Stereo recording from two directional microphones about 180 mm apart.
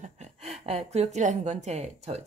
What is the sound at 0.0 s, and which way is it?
A woman's voice, 40° right (ahead or behind).